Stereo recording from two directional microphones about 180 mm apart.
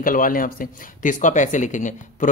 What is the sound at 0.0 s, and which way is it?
Speech, 50° left (ahead or behind).